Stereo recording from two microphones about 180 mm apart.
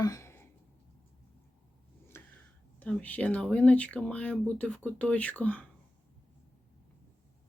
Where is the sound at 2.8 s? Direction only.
10° left (ahead or behind).